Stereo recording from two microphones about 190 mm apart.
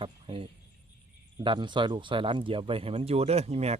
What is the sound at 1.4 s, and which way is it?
Speech, 25° right (ahead or behind).